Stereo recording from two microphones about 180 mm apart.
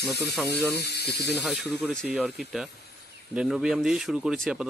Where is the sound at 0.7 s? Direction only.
65° left (ahead or behind).